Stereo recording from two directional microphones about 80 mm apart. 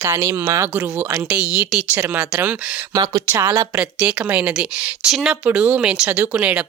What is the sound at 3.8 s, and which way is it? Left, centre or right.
A woman's voice, centre.